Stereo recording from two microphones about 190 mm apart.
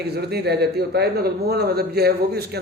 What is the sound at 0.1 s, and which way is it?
Speech, 55° right (ahead or behind).